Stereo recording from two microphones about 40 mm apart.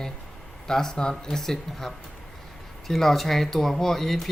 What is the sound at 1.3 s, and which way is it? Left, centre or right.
Speech, centre.